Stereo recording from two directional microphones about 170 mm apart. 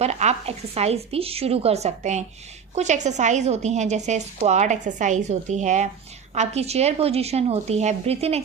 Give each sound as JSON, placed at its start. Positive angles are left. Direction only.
{"t": 0.0, "sound": "a woman's voice", "side_deg": -40}